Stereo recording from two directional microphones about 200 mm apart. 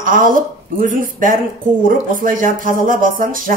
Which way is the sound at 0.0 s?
40° right (ahead or behind).